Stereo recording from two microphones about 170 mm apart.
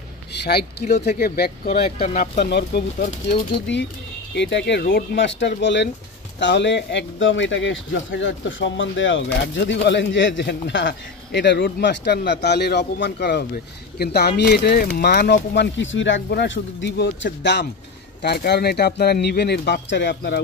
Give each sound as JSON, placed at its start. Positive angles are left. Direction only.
{"t": 0.4, "sound": "speech", "side_deg": 70}
{"t": 4.4, "sound": "speech", "side_deg": 90}
{"t": 18.2, "sound": "speech", "side_deg": 70}